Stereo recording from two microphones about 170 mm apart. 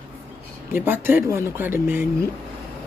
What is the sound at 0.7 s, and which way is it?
Speech, 10° right (ahead or behind).